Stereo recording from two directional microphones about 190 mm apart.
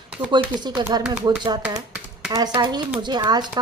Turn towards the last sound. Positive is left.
turn(degrees=-20)  # may be behind; listen again after turning